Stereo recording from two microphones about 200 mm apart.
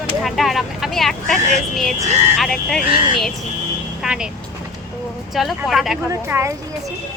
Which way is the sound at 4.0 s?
5° right (ahead or behind).